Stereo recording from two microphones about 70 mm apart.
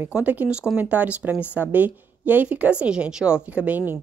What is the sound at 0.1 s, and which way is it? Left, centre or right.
A woman's voice, right.